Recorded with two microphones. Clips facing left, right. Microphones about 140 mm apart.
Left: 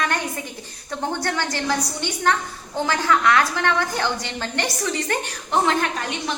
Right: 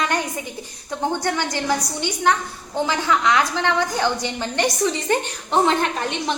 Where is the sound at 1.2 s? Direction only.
15° right (ahead or behind).